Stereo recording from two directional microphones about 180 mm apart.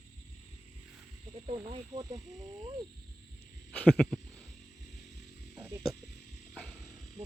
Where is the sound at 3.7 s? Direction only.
5° left (ahead or behind).